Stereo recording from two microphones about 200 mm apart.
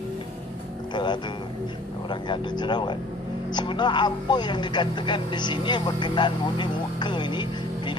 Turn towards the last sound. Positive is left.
turn(degrees=25)  # may be behind; listen again after turning